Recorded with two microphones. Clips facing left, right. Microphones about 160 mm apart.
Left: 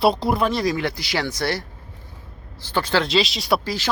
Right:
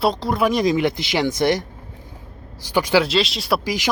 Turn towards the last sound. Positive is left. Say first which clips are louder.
# right 3 dB
turn(degrees=-15)  # may be behind; listen again after turning